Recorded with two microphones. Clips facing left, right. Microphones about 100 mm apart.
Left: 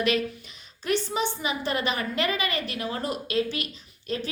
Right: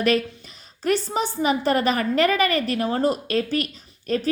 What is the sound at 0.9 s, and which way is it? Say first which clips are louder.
A woman's voice: right 4 dB; 40° right (ahead or behind).